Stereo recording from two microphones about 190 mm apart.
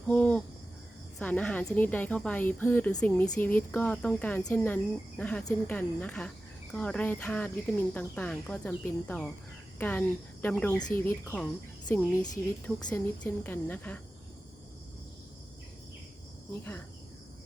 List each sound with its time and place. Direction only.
0.1 s a sound: 5° left (ahead or behind)
1.2 s a woman's voice: 5° left (ahead or behind)
10.8 s speech: 20° left (ahead or behind)
11.0 s a woman's voice: 5° left (ahead or behind)